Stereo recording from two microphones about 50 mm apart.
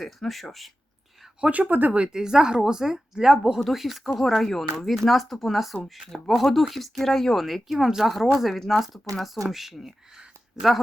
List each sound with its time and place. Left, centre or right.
0.0 s speech: centre
1.5 s speech: right
1.9 s speech: centre